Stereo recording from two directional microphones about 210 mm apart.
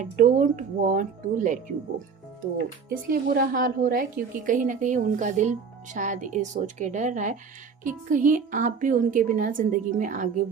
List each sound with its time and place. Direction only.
0.0 s speech: 40° right (ahead or behind)
2.9 s a woman's voice: 45° right (ahead or behind)